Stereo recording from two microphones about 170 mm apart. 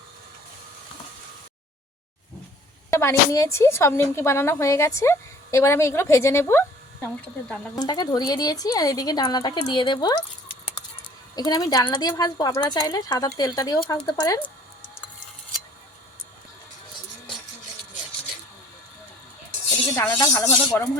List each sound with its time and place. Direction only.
2.9 s speech: 15° left (ahead or behind)
7.8 s speech: 25° left (ahead or behind)
11.3 s speech: 25° left (ahead or behind)
20.0 s speech: 15° left (ahead or behind)